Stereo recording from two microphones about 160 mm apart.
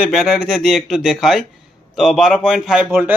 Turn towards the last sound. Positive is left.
turn(degrees=-10)  # may be behind; listen again after turning